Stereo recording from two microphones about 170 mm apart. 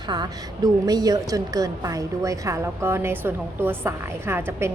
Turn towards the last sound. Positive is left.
turn(degrees=-15)  # may be behind; listen again after turning